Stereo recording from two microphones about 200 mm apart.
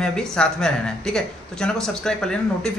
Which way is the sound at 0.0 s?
5° left (ahead or behind).